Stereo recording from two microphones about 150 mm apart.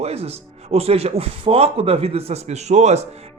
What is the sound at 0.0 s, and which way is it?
Speech, 45° right (ahead or behind).